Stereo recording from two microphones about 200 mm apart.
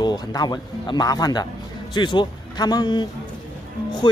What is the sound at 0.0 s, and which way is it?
Speech, 20° left (ahead or behind).